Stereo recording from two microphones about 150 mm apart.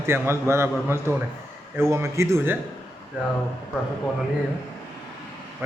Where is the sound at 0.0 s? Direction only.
15° right (ahead or behind).